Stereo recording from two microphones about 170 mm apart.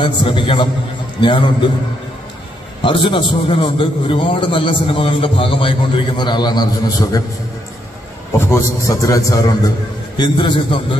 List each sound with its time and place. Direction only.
0.0 s a man's voice: 30° left (ahead or behind)
2.8 s a man's voice: 30° left (ahead or behind)
8.4 s a man's voice: 15° left (ahead or behind)